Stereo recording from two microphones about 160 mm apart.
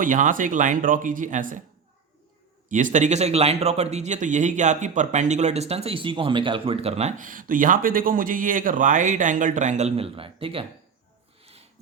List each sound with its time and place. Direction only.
0.0 s speech: 55° right (ahead or behind)
2.6 s speech: 55° right (ahead or behind); by 10.7 s 35° right (ahead or behind)